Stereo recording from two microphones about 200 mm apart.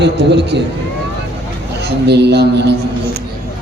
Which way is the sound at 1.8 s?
55° right (ahead or behind).